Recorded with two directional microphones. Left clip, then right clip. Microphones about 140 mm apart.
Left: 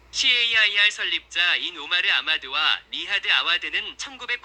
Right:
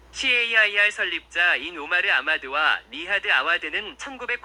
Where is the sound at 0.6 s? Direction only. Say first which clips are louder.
Left 1 dB; 35° right (ahead or behind).